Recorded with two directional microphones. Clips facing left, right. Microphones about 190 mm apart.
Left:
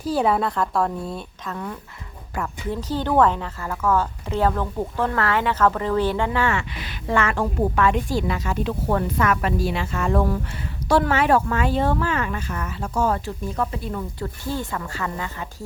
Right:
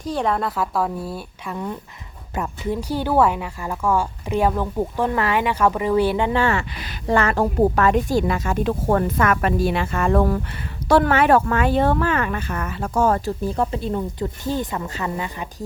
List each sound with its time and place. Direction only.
0.0 s a woman's voice: 5° left (ahead or behind); by 6.3 s 15° right (ahead or behind)
6.3 s a woman's voice: 35° right (ahead or behind)
13.4 s speech: 30° right (ahead or behind)